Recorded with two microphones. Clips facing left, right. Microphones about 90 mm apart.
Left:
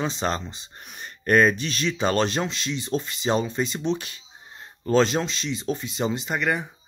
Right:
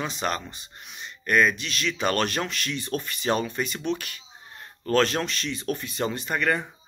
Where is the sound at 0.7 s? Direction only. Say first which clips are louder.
Left 1 dB; 45° left (ahead or behind).